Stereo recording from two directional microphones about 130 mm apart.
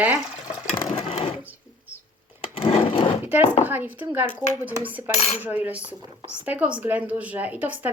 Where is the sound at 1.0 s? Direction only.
50° left (ahead or behind).